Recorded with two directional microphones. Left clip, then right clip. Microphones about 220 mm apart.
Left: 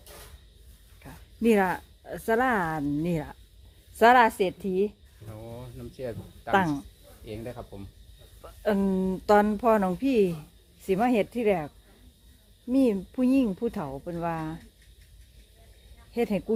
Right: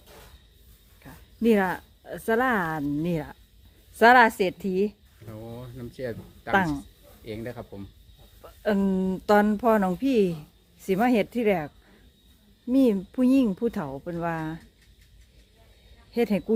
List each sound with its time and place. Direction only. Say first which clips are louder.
1.0 s speech: right 1 dB; centre (ahead or behind)
5.5 s a sound: right 1 dB; 40° right (ahead or behind)
6.5 s speech: right 1 dB; centre (ahead or behind)
7.3 s speech: right 2 dB; 35° right (ahead or behind)
8.4 s speech: right 1 dB; centre (ahead or behind)
16.1 s speech: right 2 dB; 10° right (ahead or behind)